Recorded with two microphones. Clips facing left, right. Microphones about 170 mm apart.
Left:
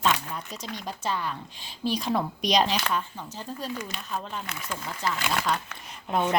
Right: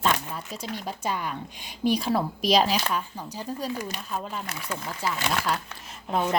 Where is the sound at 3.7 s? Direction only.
40° right (ahead or behind).